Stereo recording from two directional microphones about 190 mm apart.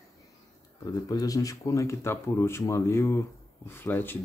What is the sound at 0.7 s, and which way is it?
Speech, 20° left (ahead or behind).